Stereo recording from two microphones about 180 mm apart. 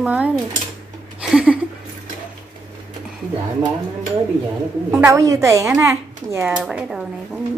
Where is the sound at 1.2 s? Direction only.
5° right (ahead or behind).